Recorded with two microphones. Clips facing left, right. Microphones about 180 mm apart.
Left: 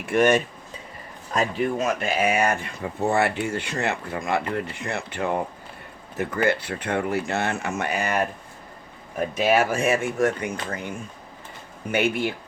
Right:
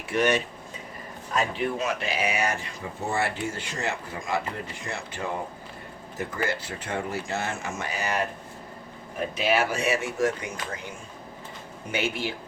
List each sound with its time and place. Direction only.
0.0 s speech: 50° left (ahead or behind)
11.9 s speech: 55° left (ahead or behind)